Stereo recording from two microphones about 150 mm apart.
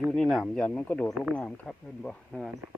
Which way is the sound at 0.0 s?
Centre (ahead or behind).